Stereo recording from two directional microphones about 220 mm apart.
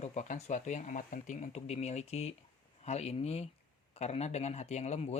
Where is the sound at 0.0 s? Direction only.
35° left (ahead or behind).